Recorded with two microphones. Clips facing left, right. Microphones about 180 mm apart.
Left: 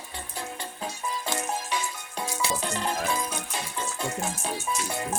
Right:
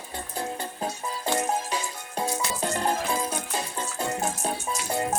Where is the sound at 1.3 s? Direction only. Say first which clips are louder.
Right 6 dB; 35° right (ahead or behind).